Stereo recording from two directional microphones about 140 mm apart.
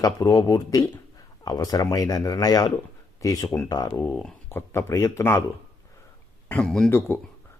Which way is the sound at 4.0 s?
15° left (ahead or behind).